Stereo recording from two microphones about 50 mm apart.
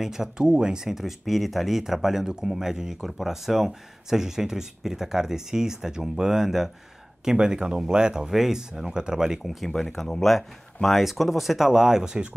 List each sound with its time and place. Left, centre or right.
0.0 s speech: centre